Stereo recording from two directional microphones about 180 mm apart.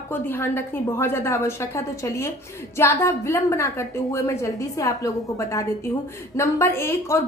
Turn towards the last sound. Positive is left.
turn(degrees=15)  # may be behind; listen again after turning